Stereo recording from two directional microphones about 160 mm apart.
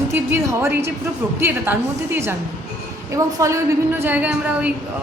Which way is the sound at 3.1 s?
20° right (ahead or behind).